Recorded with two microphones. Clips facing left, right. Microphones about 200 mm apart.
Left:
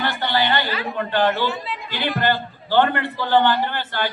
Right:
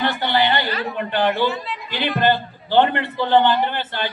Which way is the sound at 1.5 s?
Centre (ahead or behind).